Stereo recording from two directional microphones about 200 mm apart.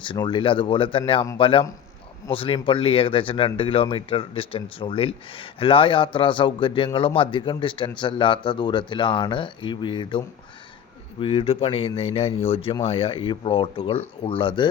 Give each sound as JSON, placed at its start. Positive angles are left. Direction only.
{"t": 0.0, "sound": "speech", "side_deg": 25}